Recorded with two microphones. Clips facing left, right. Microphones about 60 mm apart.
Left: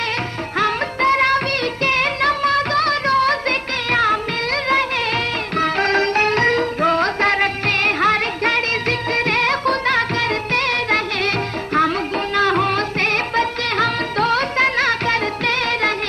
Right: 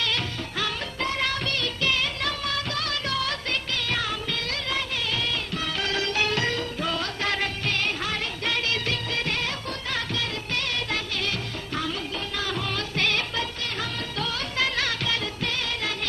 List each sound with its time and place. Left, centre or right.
0.6 s music of bollywood: left
3.8 s music: left